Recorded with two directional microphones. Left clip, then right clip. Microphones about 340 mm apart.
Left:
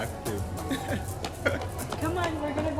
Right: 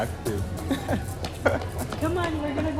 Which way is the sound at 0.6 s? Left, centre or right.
Centre.